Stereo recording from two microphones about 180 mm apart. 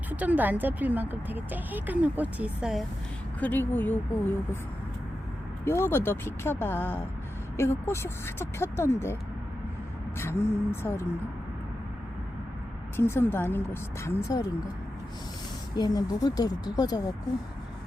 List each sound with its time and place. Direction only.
0.1 s speech: 10° right (ahead or behind)
3.4 s speech: 10° left (ahead or behind)
5.6 s speech: 10° left (ahead or behind)
10.2 s speech: 15° left (ahead or behind)
13.0 s speech: 15° left (ahead or behind)
15.7 s speech: 20° left (ahead or behind)